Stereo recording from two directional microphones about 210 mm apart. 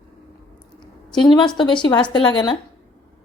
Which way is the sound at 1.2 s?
20° left (ahead or behind).